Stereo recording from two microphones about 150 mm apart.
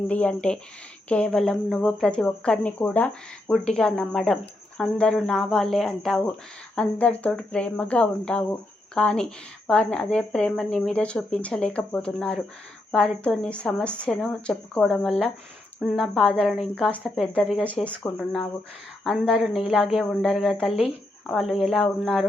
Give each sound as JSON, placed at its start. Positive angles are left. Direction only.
{"t": 0.1, "sound": "a woman's voice", "side_deg": 10}
{"t": 19.0, "sound": "a woman's voice", "side_deg": -5}